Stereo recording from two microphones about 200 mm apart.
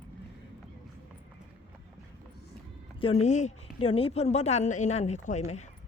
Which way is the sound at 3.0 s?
30° left (ahead or behind).